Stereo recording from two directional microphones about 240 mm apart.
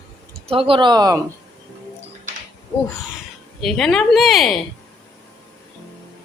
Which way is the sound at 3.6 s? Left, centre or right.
Centre.